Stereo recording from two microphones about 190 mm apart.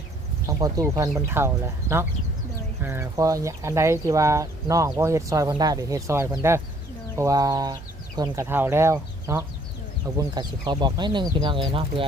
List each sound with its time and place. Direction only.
0.4 s speech: 15° right (ahead or behind)